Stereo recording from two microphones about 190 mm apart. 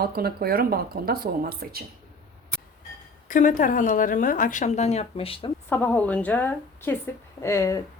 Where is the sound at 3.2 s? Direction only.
45° left (ahead or behind).